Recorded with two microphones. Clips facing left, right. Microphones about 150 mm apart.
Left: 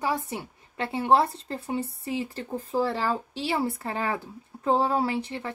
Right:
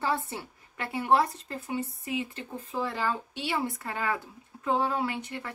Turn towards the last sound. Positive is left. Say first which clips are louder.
# left 4 dB
turn(degrees=30)  # may be behind; listen again after turning